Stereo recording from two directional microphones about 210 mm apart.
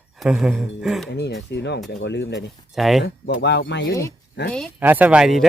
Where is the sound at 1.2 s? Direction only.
55° left (ahead or behind).